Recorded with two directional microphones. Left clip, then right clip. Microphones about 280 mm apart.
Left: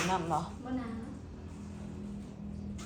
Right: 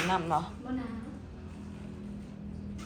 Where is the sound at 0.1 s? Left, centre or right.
Centre.